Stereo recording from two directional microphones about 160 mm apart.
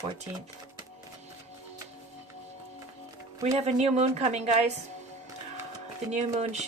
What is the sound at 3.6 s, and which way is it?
Speech, 40° right (ahead or behind).